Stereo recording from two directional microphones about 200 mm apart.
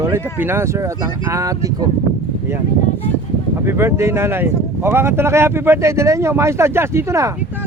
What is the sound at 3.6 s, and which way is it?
Speech, 10° right (ahead or behind).